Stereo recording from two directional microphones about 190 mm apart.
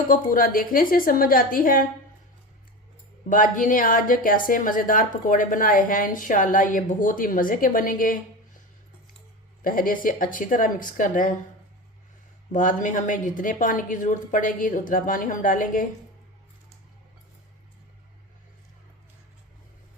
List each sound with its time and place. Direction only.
0.1 s a woman's voice: 45° left (ahead or behind)
3.2 s a woman's voice: 45° left (ahead or behind)
9.6 s a woman's voice: 45° left (ahead or behind)
12.5 s a woman's voice: 45° left (ahead or behind)